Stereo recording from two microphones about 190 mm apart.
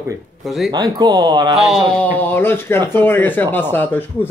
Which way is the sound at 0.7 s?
20° right (ahead or behind).